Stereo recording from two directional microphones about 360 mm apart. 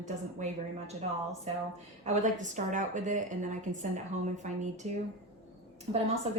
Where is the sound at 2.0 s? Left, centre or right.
Centre.